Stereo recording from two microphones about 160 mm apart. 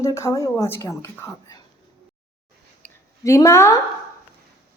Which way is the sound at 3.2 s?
20° left (ahead or behind).